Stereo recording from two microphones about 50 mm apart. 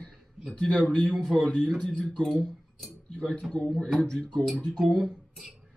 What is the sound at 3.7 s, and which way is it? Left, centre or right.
Speech, centre.